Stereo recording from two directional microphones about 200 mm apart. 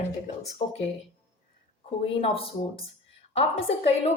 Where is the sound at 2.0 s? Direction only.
30° left (ahead or behind).